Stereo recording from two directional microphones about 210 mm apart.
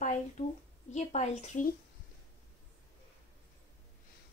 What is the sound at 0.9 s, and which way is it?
Speech, 30° left (ahead or behind).